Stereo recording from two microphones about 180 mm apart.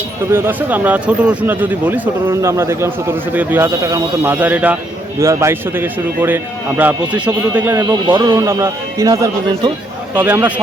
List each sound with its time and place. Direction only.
0.3 s speech: 15° right (ahead or behind)
8.0 s speech: 25° right (ahead or behind)